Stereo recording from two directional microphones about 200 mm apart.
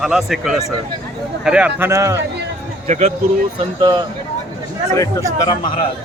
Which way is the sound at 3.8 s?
20° right (ahead or behind).